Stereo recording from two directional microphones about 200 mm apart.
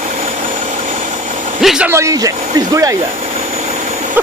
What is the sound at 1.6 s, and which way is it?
Speech, 5° right (ahead or behind).